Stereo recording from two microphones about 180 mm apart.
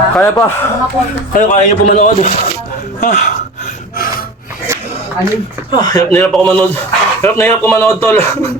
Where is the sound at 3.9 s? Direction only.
50° left (ahead or behind).